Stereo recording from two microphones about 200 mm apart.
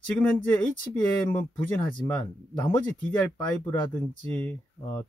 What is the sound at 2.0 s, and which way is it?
Speech, 5° left (ahead or behind).